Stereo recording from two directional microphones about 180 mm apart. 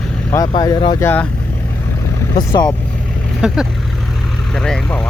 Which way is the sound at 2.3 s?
25° left (ahead or behind).